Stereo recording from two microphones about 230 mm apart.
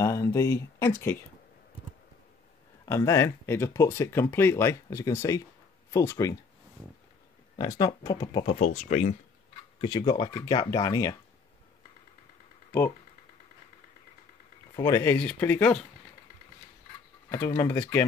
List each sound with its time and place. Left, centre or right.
0.0 s speech: centre
2.8 s speech: centre
7.5 s speech: centre; by 9.1 s left
9.8 s speech: centre
14.8 s speech: centre
17.3 s speech: centre